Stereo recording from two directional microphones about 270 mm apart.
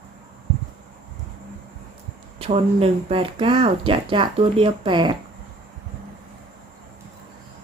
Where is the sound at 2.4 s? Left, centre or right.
Right.